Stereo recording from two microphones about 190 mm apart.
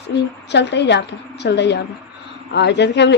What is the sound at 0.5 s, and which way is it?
Speech, 65° left (ahead or behind).